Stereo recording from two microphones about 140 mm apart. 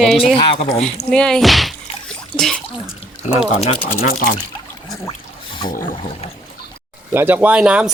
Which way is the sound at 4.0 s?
90° left.